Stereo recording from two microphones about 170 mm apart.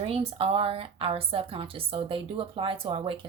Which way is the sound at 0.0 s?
35° right (ahead or behind).